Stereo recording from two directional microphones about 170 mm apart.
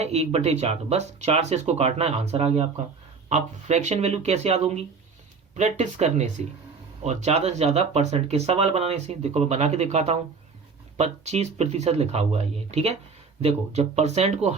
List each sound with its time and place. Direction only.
0.0 s speech: 35° right (ahead or behind)